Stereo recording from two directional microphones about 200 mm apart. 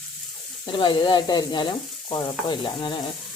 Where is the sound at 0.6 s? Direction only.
25° left (ahead or behind).